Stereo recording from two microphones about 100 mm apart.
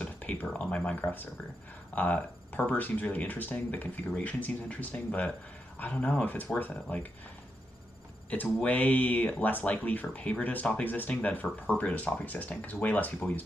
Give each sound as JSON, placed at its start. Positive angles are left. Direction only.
{"t": 0.0, "sound": "speech", "side_deg": 15}
{"t": 8.3, "sound": "speech", "side_deg": 15}